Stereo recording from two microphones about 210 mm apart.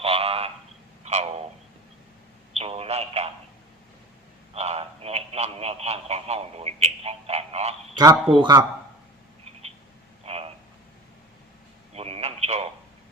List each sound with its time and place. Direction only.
0.0 s a sound: 25° right (ahead or behind)
2.5 s telephone: 30° right (ahead or behind)
4.5 s telephone: 30° right (ahead or behind)
7.9 s a man's voice: 20° right (ahead or behind)
10.2 s a sound: 30° right (ahead or behind)
11.9 s telephone: 30° right (ahead or behind)